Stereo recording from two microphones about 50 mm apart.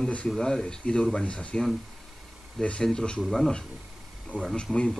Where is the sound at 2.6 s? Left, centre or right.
Centre.